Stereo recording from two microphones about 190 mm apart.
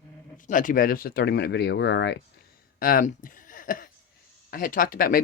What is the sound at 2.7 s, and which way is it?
Speech, 50° left (ahead or behind).